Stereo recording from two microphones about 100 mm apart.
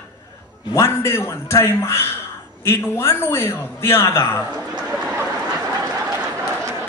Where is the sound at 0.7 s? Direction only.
25° left (ahead or behind).